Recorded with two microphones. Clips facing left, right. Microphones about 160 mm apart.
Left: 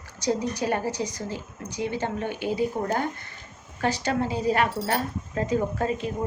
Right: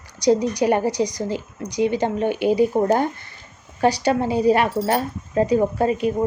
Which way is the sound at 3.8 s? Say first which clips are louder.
Right 7 dB; 15° right (ahead or behind).